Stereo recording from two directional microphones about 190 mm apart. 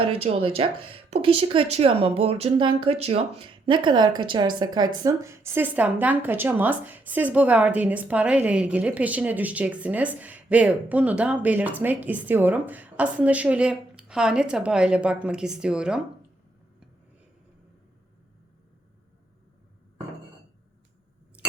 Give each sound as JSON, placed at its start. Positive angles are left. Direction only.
{"t": 0.0, "sound": "a woman's voice", "side_deg": -30}